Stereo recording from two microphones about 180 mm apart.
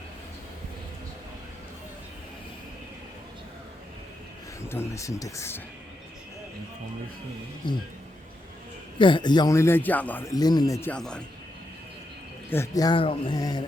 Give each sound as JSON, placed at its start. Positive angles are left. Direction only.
{"t": 4.7, "sound": "a man's voice", "side_deg": 15}
{"t": 9.0, "sound": "a man's voice", "side_deg": 25}
{"t": 12.5, "sound": "speech", "side_deg": 15}